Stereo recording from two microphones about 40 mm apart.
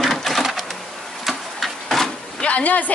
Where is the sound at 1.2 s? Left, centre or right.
Centre.